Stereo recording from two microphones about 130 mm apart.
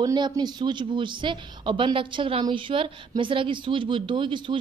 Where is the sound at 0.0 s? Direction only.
35° right (ahead or behind).